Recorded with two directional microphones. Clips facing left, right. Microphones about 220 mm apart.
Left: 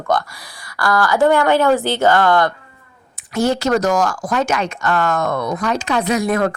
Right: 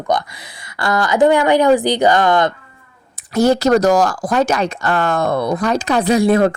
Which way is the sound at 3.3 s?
40° right (ahead or behind).